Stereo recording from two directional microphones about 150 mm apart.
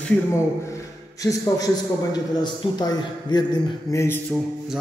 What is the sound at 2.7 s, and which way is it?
A man's voice, 30° left (ahead or behind).